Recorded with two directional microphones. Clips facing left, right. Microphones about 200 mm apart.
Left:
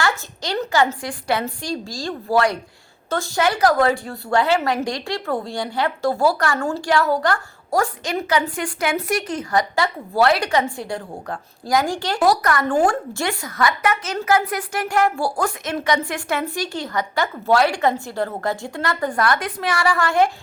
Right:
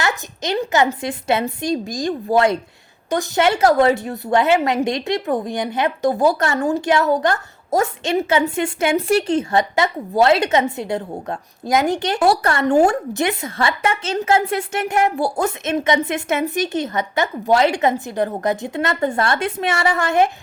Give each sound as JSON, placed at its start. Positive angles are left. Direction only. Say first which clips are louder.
{"t": 0.0, "sound": "a woman's voice", "louder": "right 1 dB", "side_deg": -20}